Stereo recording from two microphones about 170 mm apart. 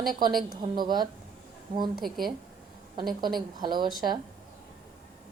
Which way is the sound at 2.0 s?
Centre (ahead or behind).